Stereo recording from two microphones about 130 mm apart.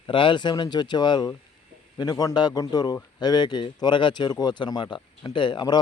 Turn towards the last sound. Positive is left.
turn(degrees=35)  # may be behind; listen again after turning